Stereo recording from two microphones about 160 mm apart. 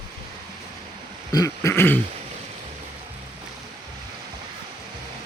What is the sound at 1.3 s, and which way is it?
Throat clearing, 20° left (ahead or behind).